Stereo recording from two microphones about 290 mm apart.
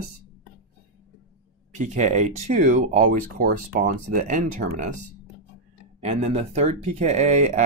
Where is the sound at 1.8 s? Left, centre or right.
Right.